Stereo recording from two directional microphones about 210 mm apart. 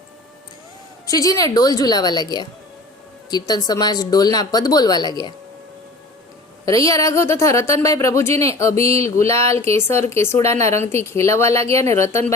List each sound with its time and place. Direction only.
1.0 s speech: 15° left (ahead or behind)
6.7 s speech: 15° left (ahead or behind)